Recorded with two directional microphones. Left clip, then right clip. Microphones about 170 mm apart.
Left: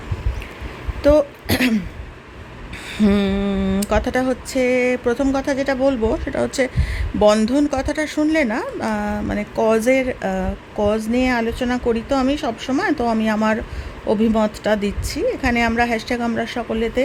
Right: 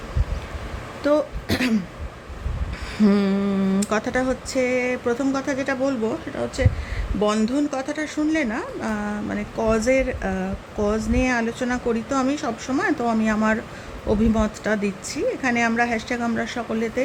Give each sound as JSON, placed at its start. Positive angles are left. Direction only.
{"t": 1.0, "sound": "speech", "side_deg": 30}
{"t": 3.0, "sound": "speech", "side_deg": 20}
{"t": 6.3, "sound": "speech", "side_deg": 40}